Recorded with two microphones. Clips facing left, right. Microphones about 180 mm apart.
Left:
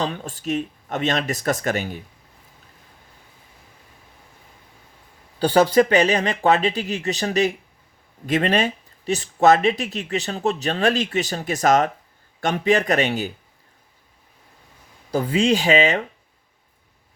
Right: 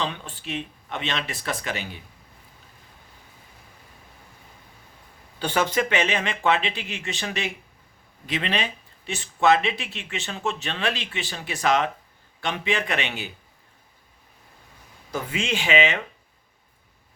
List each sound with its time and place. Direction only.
0.0 s speech: 40° left (ahead or behind)
5.4 s speech: 35° left (ahead or behind)
15.1 s speech: 35° left (ahead or behind)